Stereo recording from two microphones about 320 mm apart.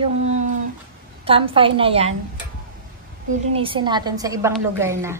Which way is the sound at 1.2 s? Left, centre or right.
Centre.